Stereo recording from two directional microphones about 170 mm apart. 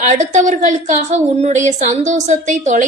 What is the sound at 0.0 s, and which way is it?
A woman's voice, 45° right (ahead or behind).